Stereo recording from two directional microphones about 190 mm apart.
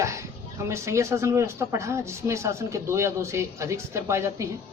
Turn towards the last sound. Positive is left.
turn(degrees=-15)  # may be behind; listen again after turning